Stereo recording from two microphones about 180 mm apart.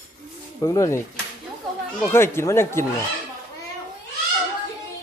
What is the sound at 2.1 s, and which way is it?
Speech, 15° left (ahead or behind).